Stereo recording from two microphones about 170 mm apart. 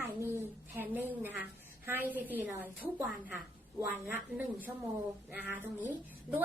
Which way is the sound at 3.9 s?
10° right (ahead or behind).